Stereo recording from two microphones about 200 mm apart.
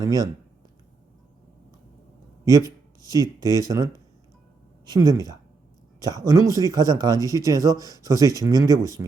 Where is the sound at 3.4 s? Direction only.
20° right (ahead or behind).